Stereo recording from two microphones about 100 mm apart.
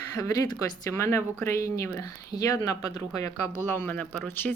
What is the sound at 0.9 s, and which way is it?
Speech, 30° left (ahead or behind).